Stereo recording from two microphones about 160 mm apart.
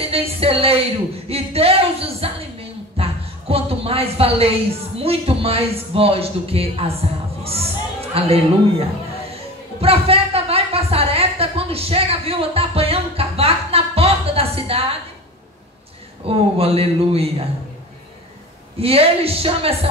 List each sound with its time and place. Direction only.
0.0 s a woman's voice: 35° right (ahead or behind)
9.8 s a sound: 35° right (ahead or behind)
16.3 s a woman's voice: 35° right (ahead or behind)
18.8 s a woman's voice: 35° right (ahead or behind)